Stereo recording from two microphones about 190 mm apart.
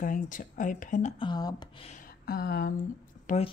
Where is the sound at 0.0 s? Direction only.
45° left (ahead or behind).